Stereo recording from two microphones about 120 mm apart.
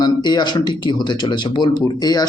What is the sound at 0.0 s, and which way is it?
Speech, 35° left (ahead or behind).